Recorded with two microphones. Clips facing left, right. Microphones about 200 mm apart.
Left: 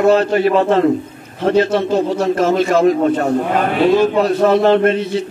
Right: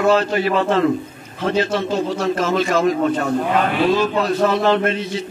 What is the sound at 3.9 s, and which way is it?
A man's voice, 50° left (ahead or behind).